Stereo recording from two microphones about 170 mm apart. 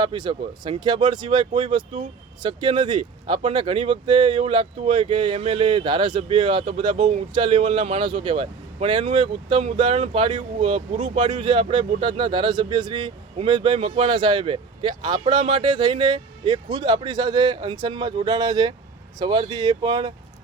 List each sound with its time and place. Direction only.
0.0 s speech: 25° right (ahead or behind)